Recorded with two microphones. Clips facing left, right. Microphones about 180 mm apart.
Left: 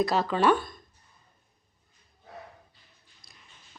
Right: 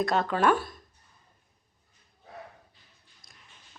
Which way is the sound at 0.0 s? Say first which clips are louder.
Left 1 dB; centre (ahead or behind).